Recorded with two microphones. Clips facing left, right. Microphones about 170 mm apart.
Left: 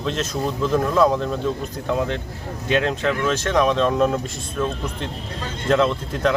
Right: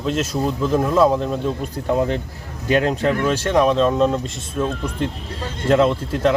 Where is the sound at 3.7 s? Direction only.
Centre (ahead or behind).